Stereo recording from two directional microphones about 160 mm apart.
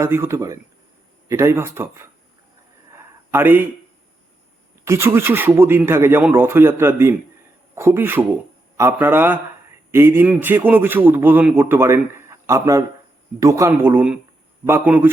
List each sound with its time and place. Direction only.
0.0 s a man's voice: 15° right (ahead or behind)
2.9 s a sound: 15° right (ahead or behind)
4.9 s a man's voice: 15° right (ahead or behind)